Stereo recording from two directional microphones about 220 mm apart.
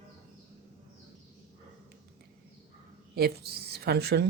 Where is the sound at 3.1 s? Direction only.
45° right (ahead or behind).